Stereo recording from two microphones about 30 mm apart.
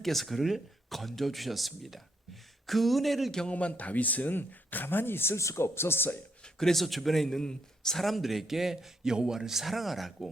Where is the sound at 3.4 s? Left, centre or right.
Left.